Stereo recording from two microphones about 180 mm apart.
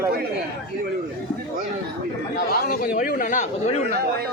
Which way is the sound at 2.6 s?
50° left (ahead or behind).